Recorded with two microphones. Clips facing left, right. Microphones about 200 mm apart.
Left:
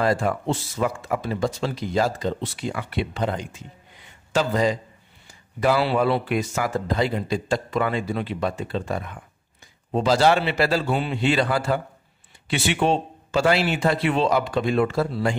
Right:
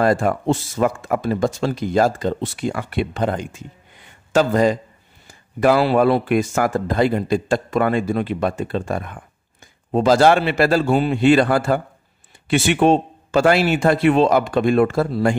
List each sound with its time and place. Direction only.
0.0 s speech: 50° right (ahead or behind)